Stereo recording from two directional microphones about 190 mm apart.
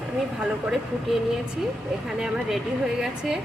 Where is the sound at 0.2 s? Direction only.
5° right (ahead or behind).